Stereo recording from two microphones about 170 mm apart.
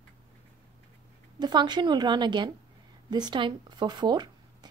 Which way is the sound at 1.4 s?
25° right (ahead or behind).